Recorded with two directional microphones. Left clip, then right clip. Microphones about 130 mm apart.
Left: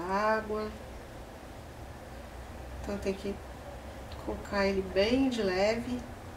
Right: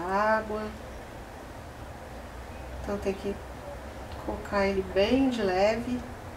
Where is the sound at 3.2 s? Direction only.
5° left (ahead or behind).